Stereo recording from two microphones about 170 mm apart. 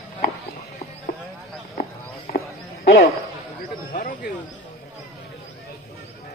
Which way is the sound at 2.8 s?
65° left (ahead or behind).